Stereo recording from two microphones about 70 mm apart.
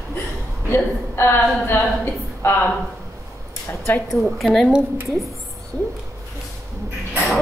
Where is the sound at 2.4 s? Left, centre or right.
Left.